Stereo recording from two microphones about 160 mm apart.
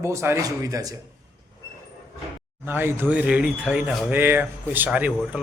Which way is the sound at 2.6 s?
15° right (ahead or behind).